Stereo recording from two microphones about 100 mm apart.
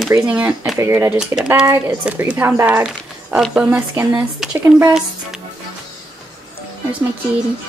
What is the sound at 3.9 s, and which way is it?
Speech, 25° right (ahead or behind).